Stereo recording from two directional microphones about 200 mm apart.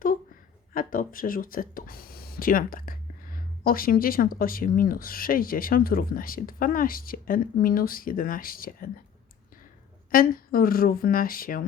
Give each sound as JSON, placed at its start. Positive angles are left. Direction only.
{"t": 0.7, "sound": "speech", "side_deg": 45}
{"t": 10.1, "sound": "speech", "side_deg": 45}